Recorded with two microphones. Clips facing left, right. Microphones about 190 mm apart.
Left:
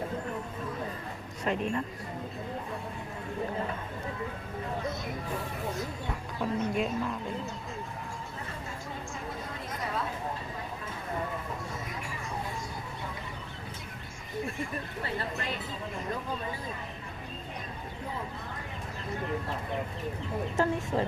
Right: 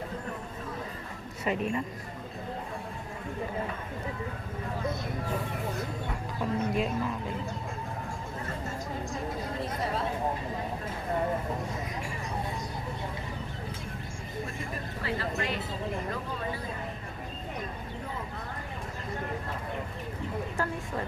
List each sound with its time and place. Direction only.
1.5 s speech: 5° right (ahead or behind)
6.4 s a woman's voice: 10° right (ahead or behind)
20.6 s speech: 25° left (ahead or behind)